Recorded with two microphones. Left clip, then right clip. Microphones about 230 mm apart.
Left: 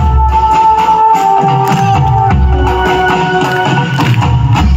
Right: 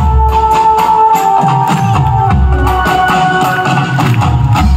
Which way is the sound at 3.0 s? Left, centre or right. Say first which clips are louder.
Right 1 dB; right.